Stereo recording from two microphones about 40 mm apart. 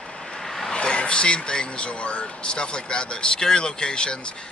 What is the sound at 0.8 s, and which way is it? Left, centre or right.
Speech, left.